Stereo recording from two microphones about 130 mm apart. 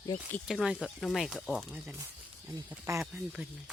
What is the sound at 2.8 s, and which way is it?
Speech, 20° right (ahead or behind).